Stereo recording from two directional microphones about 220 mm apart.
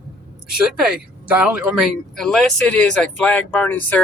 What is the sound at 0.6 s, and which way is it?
Speech, 5° right (ahead or behind).